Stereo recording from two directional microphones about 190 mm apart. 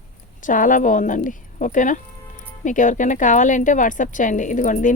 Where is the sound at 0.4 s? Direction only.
45° left (ahead or behind).